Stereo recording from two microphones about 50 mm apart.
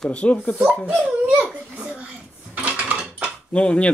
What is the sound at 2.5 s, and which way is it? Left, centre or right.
Mechanisms, right.